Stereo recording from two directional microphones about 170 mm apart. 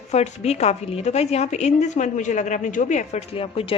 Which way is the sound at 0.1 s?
40° left (ahead or behind).